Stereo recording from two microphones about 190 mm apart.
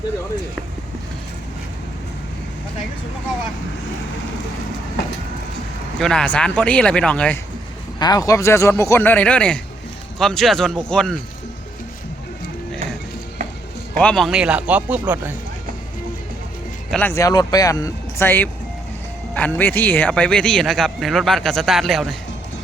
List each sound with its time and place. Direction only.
6.0 s a man's voice: 5° left (ahead or behind)
7.9 s a man's voice: 20° left (ahead or behind); by 11.2 s 5° left (ahead or behind)
14.0 s speech: centre (ahead or behind)
16.9 s a man's voice: 10° left (ahead or behind)